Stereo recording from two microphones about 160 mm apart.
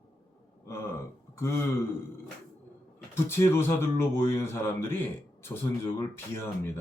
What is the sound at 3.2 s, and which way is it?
Speech, 15° left (ahead or behind).